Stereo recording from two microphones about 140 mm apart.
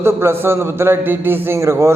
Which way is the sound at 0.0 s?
15° right (ahead or behind).